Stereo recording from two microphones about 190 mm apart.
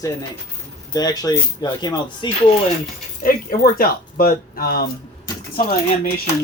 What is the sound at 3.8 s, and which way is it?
Speech, 50° left (ahead or behind).